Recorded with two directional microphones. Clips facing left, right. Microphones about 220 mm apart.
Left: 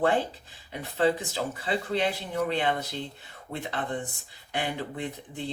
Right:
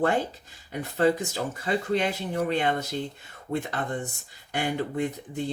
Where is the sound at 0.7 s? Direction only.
45° right (ahead or behind).